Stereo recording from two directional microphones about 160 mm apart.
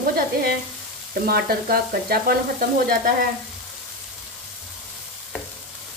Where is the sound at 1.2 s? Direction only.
70° right (ahead or behind).